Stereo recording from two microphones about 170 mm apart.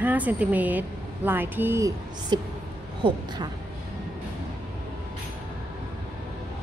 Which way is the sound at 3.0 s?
30° right (ahead or behind).